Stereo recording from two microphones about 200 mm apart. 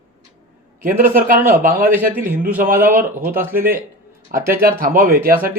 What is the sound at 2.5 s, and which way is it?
Speech, 45° right (ahead or behind).